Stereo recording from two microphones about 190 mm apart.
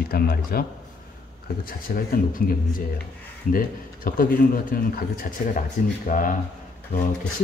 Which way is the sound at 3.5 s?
45° left (ahead or behind).